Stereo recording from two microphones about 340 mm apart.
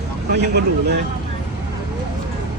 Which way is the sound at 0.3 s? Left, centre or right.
Right.